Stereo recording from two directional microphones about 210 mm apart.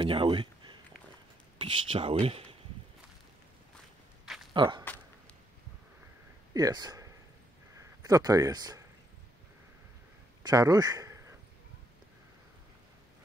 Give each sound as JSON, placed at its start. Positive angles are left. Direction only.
{"t": 0.0, "sound": "speech", "side_deg": -25}
{"t": 4.6, "sound": "speech", "side_deg": -20}
{"t": 6.5, "sound": "speech", "side_deg": -20}
{"t": 10.4, "sound": "a sound", "side_deg": -15}